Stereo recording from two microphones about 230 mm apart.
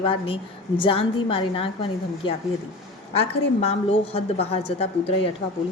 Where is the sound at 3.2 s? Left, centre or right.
Left.